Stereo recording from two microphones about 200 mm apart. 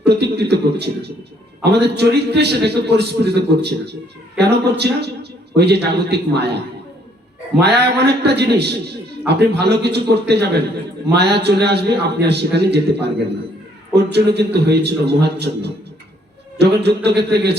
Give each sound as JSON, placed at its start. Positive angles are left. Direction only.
{"t": 0.0, "sound": "a sound", "side_deg": -55}
{"t": 1.6, "sound": "a man's voice", "side_deg": -55}
{"t": 7.6, "sound": "a man's voice", "side_deg": -55}